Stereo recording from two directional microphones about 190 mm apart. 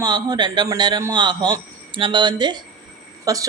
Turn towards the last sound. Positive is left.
turn(degrees=-20)  # may be behind; listen again after turning